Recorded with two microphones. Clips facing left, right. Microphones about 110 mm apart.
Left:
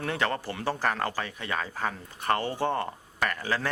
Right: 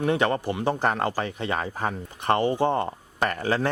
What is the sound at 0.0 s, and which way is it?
Speech, 20° right (ahead or behind).